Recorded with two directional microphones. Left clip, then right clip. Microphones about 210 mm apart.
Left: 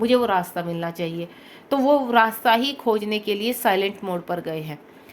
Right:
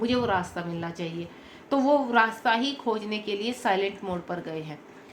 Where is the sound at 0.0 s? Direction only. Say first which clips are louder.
Left 6 dB; 50° left (ahead or behind).